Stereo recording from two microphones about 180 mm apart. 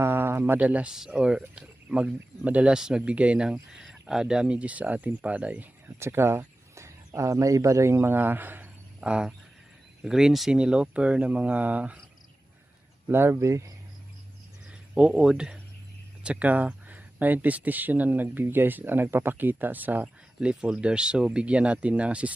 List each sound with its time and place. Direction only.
0.0 s speech: 15° right (ahead or behind)
13.1 s speech: 15° right (ahead or behind)
14.7 s speech: 5° right (ahead or behind)